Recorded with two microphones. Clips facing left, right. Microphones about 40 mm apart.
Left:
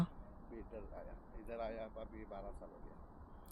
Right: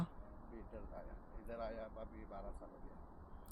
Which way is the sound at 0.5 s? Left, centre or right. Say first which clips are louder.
Left 3 dB; left.